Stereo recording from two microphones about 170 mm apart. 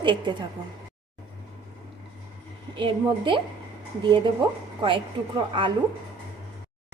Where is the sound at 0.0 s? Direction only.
30° right (ahead or behind).